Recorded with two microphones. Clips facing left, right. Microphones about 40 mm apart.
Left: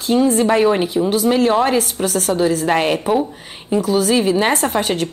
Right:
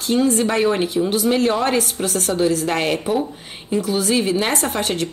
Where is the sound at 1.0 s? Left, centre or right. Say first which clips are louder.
Left 3 dB; centre.